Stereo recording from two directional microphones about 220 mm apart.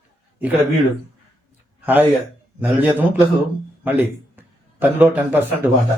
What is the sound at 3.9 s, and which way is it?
A man's voice, 10° right (ahead or behind).